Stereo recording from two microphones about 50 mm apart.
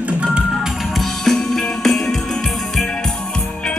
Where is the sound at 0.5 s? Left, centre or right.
Centre.